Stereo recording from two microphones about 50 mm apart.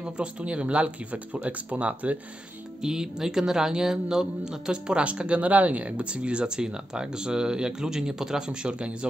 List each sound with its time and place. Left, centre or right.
0.0 s speech: right
2.8 s speech: centre